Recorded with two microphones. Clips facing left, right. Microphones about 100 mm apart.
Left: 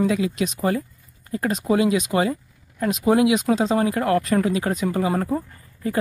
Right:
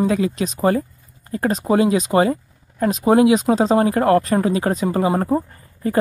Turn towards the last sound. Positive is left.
turn(degrees=-40)  # may be behind; listen again after turning